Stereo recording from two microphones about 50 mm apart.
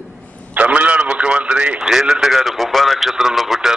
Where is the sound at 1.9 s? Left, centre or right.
Centre.